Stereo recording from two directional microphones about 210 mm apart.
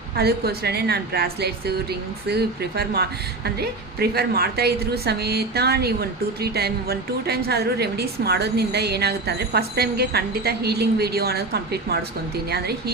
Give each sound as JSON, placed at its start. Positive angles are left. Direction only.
{"t": 0.2, "sound": "a woman's voice", "side_deg": -50}